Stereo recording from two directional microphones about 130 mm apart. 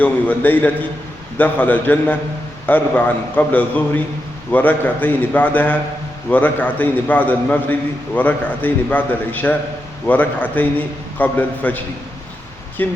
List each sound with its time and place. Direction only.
0.0 s a man's voice: 15° left (ahead or behind)
12.8 s a man's voice: 15° left (ahead or behind)